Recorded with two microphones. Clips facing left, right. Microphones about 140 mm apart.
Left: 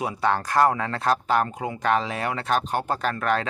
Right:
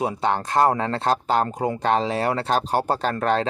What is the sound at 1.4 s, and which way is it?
Speech, 45° right (ahead or behind).